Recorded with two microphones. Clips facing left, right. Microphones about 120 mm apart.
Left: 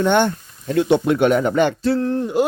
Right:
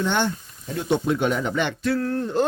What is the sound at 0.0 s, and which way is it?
Speech, 55° left (ahead or behind).